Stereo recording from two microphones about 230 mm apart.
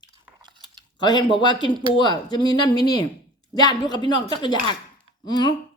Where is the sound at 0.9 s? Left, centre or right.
Centre.